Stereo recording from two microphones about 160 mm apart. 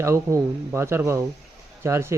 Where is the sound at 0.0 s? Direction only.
15° right (ahead or behind).